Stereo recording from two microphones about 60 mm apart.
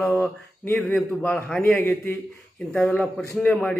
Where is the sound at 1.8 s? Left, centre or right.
Left.